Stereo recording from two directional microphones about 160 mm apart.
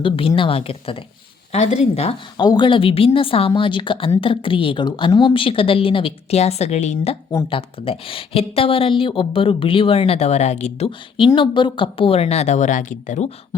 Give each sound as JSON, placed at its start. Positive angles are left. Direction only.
{"t": 0.0, "sound": "speech", "side_deg": 35}
{"t": 2.4, "sound": "speech", "side_deg": 25}